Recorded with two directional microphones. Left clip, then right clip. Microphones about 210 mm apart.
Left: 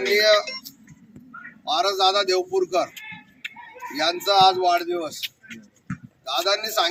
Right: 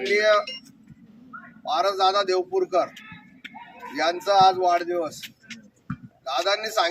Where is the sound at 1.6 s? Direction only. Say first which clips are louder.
Left 1 dB; centre (ahead or behind).